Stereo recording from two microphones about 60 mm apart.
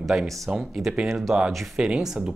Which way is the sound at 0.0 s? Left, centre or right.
Centre.